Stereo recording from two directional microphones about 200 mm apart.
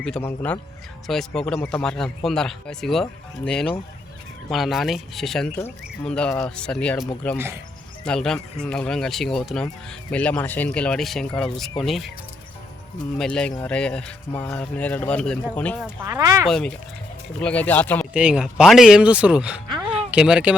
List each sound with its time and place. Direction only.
0.0 s speech: 10° left (ahead or behind)
7.3 s speech: 10° right (ahead or behind)
8.0 s speech: 5° left (ahead or behind)
13.1 s speech: 5° left (ahead or behind)
16.0 s speech: 15° right (ahead or behind)
16.5 s speech: 5° left (ahead or behind)
18.1 s speech: 5° right (ahead or behind)